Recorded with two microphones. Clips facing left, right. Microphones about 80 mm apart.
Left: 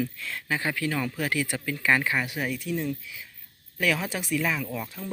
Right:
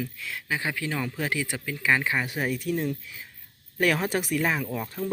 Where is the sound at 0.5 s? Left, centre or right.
Centre.